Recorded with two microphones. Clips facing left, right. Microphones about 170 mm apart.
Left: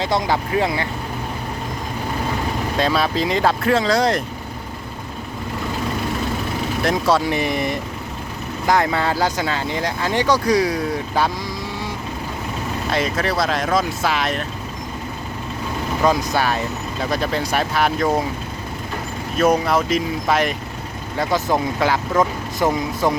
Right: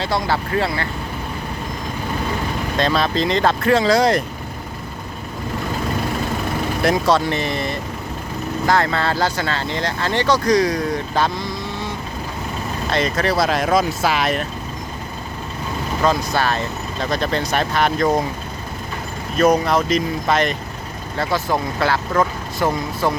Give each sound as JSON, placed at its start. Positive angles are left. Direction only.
{"t": 0.0, "sound": "speech", "side_deg": 15}
{"t": 2.7, "sound": "speech", "side_deg": 10}
{"t": 6.8, "sound": "speech", "side_deg": 0}
{"t": 7.3, "sound": "speech", "side_deg": 10}
{"t": 16.0, "sound": "speech", "side_deg": 10}
{"t": 19.4, "sound": "speech", "side_deg": 5}
{"t": 21.2, "sound": "speech", "side_deg": 20}